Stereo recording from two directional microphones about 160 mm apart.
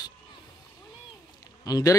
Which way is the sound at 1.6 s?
20° left (ahead or behind).